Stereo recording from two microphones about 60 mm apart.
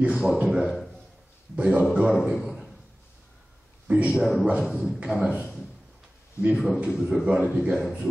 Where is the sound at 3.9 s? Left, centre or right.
Right.